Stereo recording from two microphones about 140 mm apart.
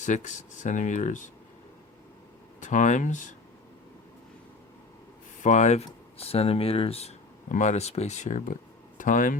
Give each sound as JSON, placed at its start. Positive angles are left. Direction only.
{"t": 0.0, "sound": "speech", "side_deg": 60}
{"t": 2.6, "sound": "speech", "side_deg": 60}
{"t": 5.4, "sound": "speech", "side_deg": 60}
{"t": 7.5, "sound": "speech", "side_deg": 55}